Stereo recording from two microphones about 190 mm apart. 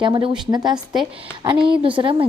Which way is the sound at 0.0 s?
25° right (ahead or behind).